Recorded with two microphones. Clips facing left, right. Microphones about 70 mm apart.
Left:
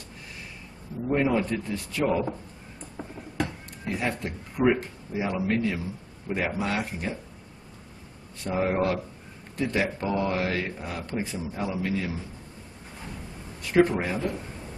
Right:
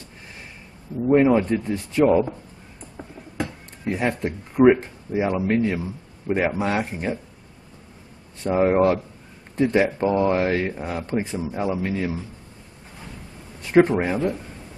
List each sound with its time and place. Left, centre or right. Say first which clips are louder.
1.0 s speech: right 8 dB; right
3.8 s speech: right 6 dB; right
8.5 s speech: right 7 dB; right
13.8 s speech: right 6 dB; right